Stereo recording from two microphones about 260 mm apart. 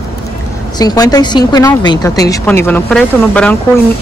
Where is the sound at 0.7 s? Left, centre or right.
Centre.